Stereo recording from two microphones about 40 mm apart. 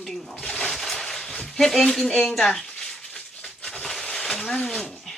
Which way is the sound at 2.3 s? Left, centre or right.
Centre.